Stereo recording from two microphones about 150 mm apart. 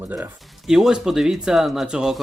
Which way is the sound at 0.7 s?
5° right (ahead or behind).